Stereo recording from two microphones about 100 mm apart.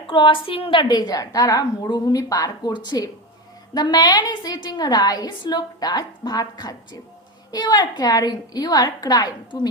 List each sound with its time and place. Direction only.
0.1 s a woman's voice: 60° left (ahead or behind)